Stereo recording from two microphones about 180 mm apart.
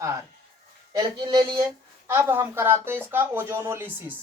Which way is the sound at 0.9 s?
25° right (ahead or behind).